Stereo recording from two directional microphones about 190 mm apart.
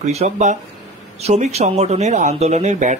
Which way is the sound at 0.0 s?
35° right (ahead or behind).